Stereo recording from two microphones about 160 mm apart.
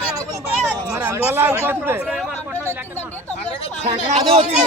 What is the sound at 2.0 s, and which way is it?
Speech, centre (ahead or behind).